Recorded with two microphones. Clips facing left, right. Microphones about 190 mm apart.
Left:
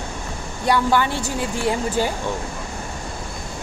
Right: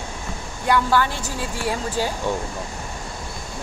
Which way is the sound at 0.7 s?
15° left (ahead or behind).